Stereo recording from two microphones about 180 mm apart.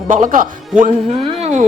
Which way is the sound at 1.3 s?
35° right (ahead or behind).